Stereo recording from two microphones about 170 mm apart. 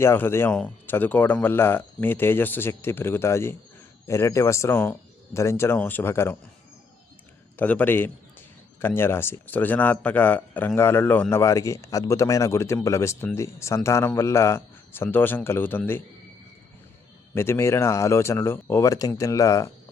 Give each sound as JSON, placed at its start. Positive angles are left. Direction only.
{"t": 0.0, "sound": "a man's voice", "side_deg": 15}
{"t": 7.5, "sound": "a man's voice", "side_deg": 10}
{"t": 17.3, "sound": "a man's voice", "side_deg": 15}